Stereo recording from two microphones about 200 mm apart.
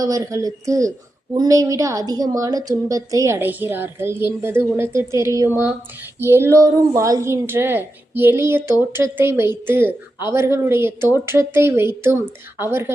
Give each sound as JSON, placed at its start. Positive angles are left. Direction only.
{"t": 0.0, "sound": "a woman's voice", "side_deg": -15}